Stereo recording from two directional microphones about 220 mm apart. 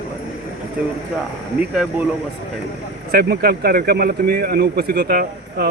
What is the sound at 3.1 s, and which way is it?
Speech, 45° right (ahead or behind).